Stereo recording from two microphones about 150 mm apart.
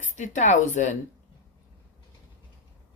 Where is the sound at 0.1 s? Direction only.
55° left (ahead or behind).